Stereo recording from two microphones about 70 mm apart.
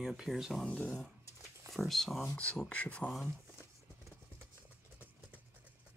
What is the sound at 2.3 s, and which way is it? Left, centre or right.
Speech, centre.